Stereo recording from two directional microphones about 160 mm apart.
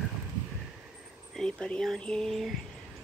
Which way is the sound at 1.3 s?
5° left (ahead or behind).